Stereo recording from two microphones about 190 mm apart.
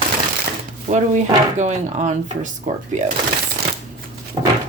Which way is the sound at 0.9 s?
40° right (ahead or behind).